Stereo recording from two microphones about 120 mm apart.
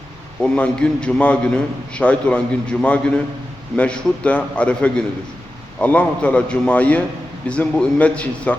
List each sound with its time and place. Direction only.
0.4 s a man's voice: 10° left (ahead or behind)